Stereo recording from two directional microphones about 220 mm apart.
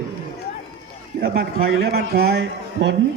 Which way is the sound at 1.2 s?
45° right (ahead or behind).